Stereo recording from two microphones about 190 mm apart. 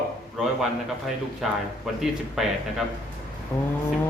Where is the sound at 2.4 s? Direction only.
Centre (ahead or behind).